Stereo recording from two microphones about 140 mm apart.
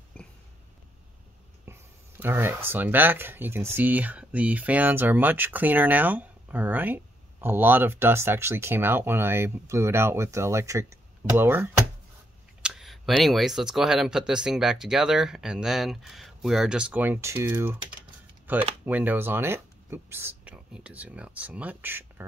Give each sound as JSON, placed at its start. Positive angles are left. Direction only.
{"t": 0.2, "sound": "a sound", "side_deg": 5}
{"t": 1.7, "sound": "speech", "side_deg": -15}
{"t": 12.6, "sound": "speech", "side_deg": 0}